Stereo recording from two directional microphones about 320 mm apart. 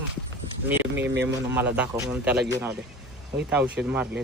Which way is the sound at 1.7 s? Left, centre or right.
Centre.